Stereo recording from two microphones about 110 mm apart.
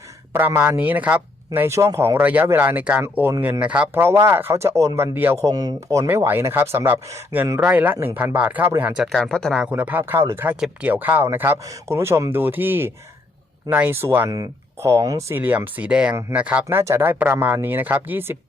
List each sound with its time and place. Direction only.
0.3 s speech: 15° right (ahead or behind)
1.5 s speech: 25° right (ahead or behind)
5.4 s speech: 35° right (ahead or behind); by 9.0 s 10° right (ahead or behind)
9.0 s speech: 5° left (ahead or behind)
9.6 s speech: 15° right (ahead or behind)
15.4 s speech: 15° right (ahead or behind)
16.6 s speech: 25° right (ahead or behind)